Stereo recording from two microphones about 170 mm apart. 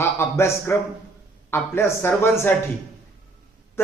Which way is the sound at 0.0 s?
15° left (ahead or behind).